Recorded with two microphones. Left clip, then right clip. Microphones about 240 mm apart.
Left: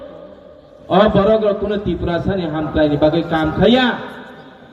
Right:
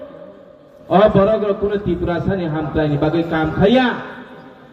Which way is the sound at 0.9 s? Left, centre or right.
Left.